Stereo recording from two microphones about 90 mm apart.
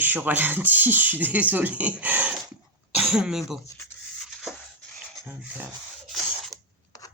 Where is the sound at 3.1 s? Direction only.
5° right (ahead or behind).